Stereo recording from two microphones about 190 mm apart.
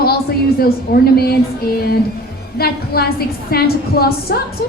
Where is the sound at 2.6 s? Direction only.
55° left (ahead or behind).